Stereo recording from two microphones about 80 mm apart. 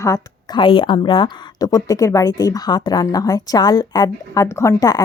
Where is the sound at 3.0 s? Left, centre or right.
Left.